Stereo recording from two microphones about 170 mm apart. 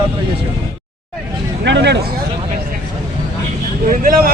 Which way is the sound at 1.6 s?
90° right.